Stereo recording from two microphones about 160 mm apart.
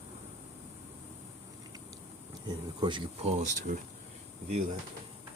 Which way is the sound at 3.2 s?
45° right (ahead or behind).